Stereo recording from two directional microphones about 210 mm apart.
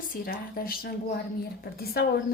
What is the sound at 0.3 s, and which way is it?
Speech, 45° left (ahead or behind).